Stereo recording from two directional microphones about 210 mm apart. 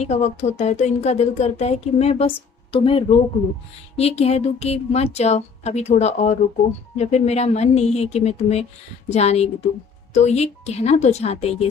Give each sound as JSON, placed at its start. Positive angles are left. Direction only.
{"t": 0.0, "sound": "speech", "side_deg": 35}